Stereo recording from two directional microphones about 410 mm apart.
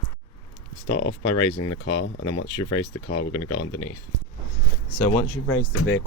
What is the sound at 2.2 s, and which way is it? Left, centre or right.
Speech, left.